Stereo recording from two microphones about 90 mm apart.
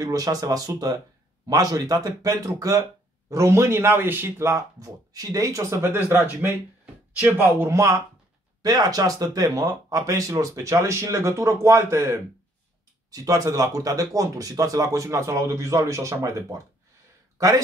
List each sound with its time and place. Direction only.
0.0 s speech: 40° right (ahead or behind)
7.2 s speech: 25° right (ahead or behind)
8.6 s speech: 45° right (ahead or behind)